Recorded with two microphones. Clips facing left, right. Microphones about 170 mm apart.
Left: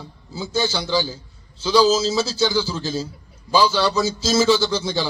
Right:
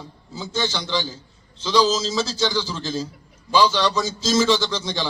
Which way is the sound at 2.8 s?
30° left (ahead or behind).